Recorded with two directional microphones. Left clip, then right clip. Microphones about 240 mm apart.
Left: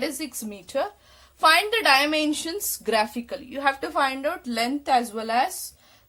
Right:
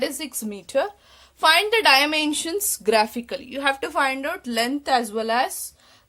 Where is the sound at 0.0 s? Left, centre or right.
Right.